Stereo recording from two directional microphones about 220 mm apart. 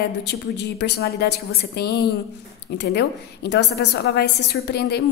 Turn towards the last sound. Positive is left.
turn(degrees=50)  # may be behind; listen again after turning